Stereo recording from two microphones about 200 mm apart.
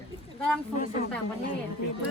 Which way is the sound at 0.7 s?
40° left (ahead or behind).